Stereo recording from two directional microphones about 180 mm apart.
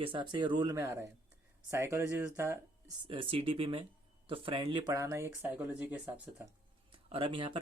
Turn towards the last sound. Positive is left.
turn(degrees=-30)  # may be behind; listen again after turning